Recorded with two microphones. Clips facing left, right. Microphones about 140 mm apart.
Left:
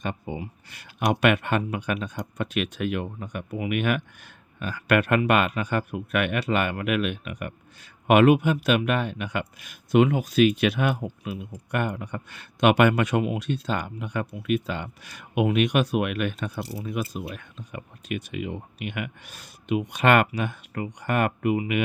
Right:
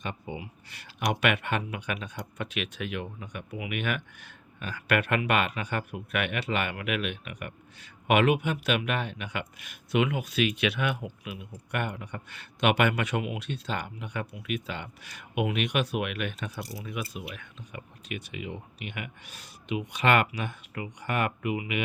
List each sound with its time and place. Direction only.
0.0 s speech: 40° left (ahead or behind)